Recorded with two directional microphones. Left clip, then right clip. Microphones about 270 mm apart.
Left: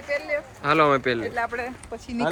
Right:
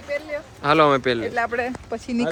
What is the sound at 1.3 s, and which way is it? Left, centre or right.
Speech, right.